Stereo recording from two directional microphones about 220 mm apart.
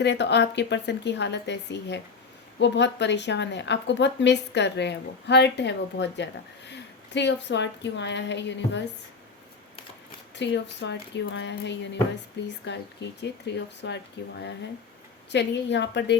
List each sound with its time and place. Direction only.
0.0 s a woman's voice: 50° left (ahead or behind)
10.3 s a woman's voice: 55° left (ahead or behind)